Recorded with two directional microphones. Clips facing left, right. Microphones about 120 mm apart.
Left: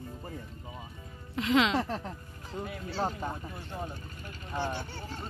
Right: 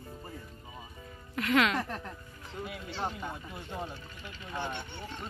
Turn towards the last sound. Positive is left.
turn(degrees=35)  # may be behind; listen again after turning